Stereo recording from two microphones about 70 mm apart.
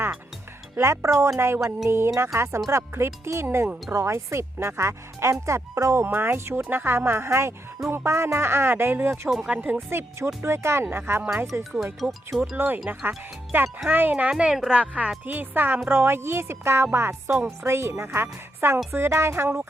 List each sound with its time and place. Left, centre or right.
0.8 s speech: right
11.9 s speech: centre
12.5 s a woman's voice: right